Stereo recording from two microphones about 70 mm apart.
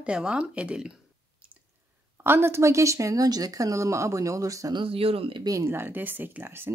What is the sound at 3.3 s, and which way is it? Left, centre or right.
Speech, right.